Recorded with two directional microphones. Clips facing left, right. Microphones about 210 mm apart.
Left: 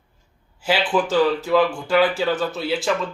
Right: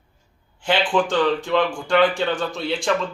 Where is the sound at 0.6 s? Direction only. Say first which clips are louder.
Even; 5° left (ahead or behind).